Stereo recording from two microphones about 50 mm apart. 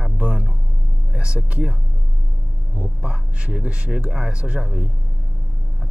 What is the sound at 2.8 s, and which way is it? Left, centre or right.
Speech, right.